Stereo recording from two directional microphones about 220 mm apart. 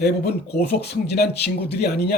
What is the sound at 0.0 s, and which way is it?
Speech, 50° left (ahead or behind).